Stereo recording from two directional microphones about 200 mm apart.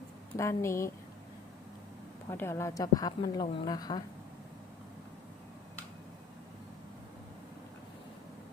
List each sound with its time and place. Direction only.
0.3 s speech: 15° left (ahead or behind)
2.3 s a woman's voice: 15° left (ahead or behind)